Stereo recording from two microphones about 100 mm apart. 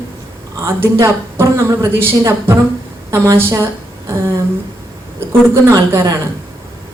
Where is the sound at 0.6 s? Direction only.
30° right (ahead or behind).